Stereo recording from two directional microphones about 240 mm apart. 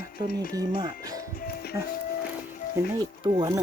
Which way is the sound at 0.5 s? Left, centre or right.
Centre.